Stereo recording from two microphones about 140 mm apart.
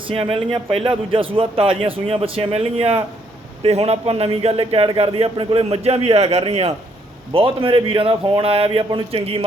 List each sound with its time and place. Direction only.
0.1 s a man's voice: 40° right (ahead or behind)